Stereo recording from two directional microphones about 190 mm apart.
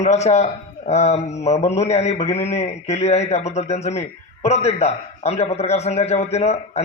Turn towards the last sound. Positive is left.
turn(degrees=35)  # may be behind; listen again after turning